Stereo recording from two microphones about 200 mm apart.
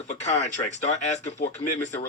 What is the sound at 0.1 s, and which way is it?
Speech, 35° left (ahead or behind).